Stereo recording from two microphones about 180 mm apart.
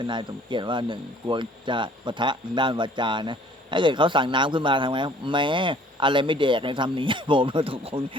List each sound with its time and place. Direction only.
0.0 s speech: 25° right (ahead or behind)